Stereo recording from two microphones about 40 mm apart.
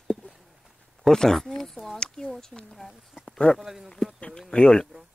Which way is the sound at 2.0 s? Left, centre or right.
Centre.